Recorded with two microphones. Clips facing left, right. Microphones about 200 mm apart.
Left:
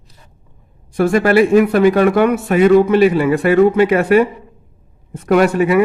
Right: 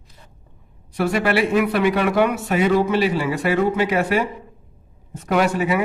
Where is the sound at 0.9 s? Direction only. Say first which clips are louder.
Left 7 dB; 45° left (ahead or behind).